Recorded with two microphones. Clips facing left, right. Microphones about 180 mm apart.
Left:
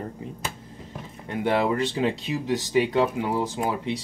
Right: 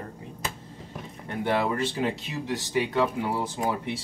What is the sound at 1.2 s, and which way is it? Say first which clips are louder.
Speech: left 3 dB; 15° left (ahead or behind).